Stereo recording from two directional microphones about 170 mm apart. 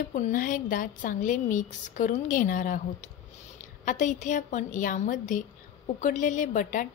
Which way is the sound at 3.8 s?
50° left (ahead or behind).